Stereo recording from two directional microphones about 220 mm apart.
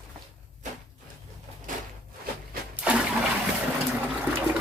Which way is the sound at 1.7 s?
35° right (ahead or behind).